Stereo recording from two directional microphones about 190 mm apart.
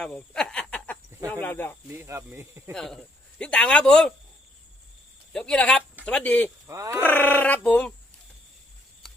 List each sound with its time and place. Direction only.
0.0 s speech: 5° left (ahead or behind)
1.9 s speech: 15° right (ahead or behind)
2.7 s a man's voice: 5° left (ahead or behind)
5.3 s a man's voice: 5° left (ahead or behind)
6.7 s speech: 15° right (ahead or behind)
7.0 s speech: 10° left (ahead or behind)